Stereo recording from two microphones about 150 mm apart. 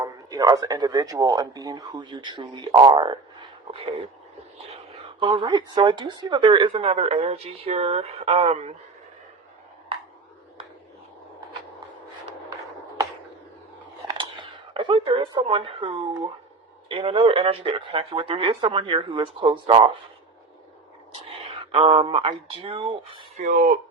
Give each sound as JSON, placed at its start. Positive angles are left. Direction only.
{"t": 0.0, "sound": "speech", "side_deg": -25}
{"t": 9.9, "sound": "a sound", "side_deg": -40}
{"t": 14.7, "sound": "speech", "side_deg": -35}
{"t": 21.6, "sound": "speech", "side_deg": -40}
{"t": 23.4, "sound": "speech", "side_deg": -60}